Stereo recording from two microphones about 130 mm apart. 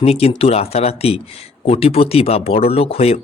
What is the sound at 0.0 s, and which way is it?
Speech, 50° left (ahead or behind).